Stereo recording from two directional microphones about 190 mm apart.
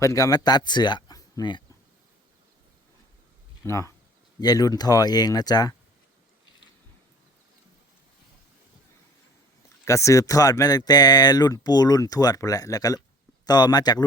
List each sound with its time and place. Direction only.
0.0 s speech: 15° left (ahead or behind)
3.6 s speech: 15° left (ahead or behind)
9.8 s speech: 15° left (ahead or behind)